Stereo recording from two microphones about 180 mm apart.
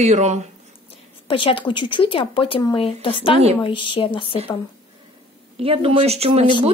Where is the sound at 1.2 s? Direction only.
30° left (ahead or behind).